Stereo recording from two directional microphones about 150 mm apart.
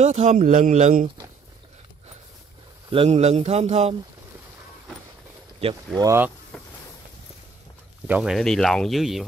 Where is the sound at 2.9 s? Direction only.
40° right (ahead or behind).